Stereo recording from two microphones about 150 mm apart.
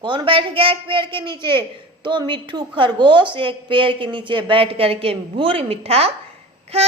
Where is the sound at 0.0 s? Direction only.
35° right (ahead or behind).